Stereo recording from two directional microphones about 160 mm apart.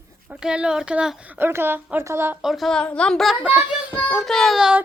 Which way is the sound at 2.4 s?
Centre (ahead or behind).